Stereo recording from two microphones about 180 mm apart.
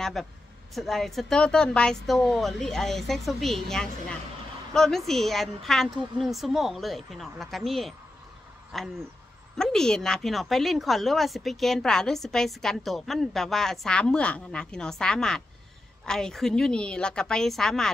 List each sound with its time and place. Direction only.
0.0 s a woman's voice: centre (ahead or behind)